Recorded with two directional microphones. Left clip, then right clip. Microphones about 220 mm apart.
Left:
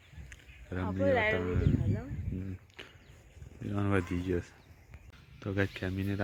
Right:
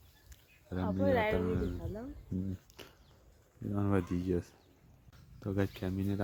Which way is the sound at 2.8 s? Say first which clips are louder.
Left 4 dB; 15° right (ahead or behind).